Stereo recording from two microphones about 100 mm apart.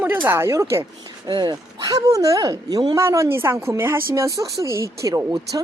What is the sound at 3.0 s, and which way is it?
Speech, 30° right (ahead or behind).